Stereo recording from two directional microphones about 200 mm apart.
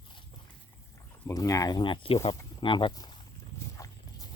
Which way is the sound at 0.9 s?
15° left (ahead or behind).